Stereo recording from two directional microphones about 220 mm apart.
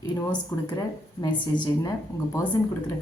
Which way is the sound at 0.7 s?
20° left (ahead or behind).